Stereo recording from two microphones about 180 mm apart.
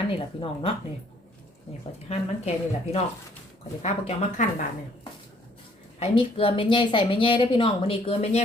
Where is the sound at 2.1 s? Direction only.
35° left (ahead or behind).